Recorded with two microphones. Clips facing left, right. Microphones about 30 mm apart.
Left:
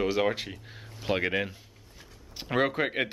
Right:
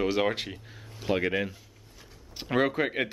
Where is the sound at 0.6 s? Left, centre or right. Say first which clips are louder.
Even; centre.